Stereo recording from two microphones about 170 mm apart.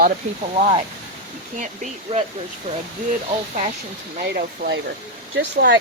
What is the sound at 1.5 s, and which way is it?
Speech, 45° right (ahead or behind).